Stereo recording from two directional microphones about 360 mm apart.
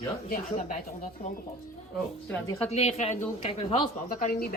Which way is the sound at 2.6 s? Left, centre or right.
Centre.